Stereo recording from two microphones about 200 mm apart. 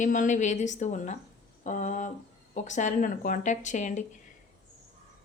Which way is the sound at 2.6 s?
40° left (ahead or behind).